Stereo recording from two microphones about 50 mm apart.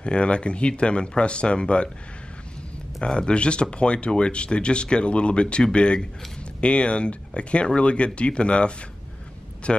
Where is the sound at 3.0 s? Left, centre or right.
Centre.